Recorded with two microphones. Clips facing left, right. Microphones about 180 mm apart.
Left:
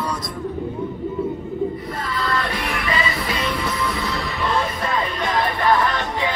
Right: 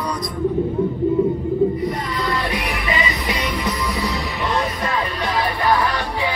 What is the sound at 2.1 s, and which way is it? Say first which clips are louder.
Music: right 1 dB; 15° right (ahead or behind).